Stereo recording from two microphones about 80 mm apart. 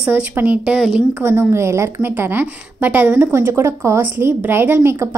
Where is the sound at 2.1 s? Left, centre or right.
Right.